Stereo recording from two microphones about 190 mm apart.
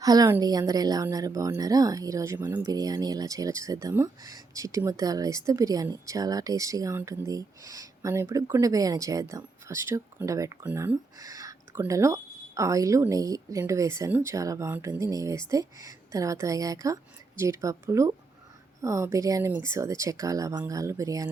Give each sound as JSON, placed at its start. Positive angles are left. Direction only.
{"t": 0.0, "sound": "speech", "side_deg": -20}